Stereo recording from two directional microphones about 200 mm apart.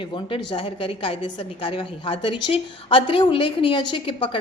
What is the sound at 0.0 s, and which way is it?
A woman's voice, 25° left (ahead or behind).